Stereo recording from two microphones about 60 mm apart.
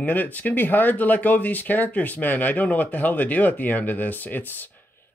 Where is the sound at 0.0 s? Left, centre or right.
Left.